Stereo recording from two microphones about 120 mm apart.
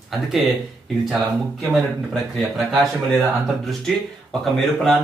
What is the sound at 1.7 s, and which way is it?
Speech, centre (ahead or behind).